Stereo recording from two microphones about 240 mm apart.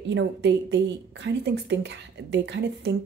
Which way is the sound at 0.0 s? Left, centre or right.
Right.